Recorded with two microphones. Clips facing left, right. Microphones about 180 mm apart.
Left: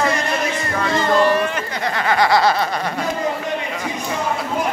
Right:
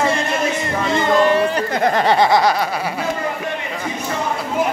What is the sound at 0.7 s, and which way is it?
Music, 20° right (ahead or behind).